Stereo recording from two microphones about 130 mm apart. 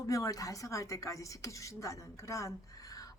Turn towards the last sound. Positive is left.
turn(degrees=25)  # may be behind; listen again after turning